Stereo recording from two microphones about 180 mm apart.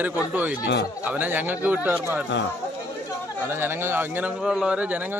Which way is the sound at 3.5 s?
10° right (ahead or behind).